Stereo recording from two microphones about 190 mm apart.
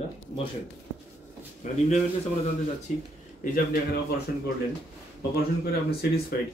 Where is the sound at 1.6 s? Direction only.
40° left (ahead or behind).